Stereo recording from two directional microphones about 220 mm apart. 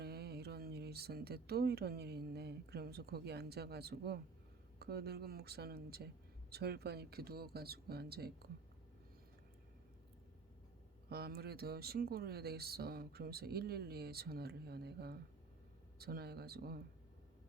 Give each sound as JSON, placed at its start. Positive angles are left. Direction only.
{"t": 0.0, "sound": "speech", "side_deg": -45}
{"t": 11.1, "sound": "speech", "side_deg": -45}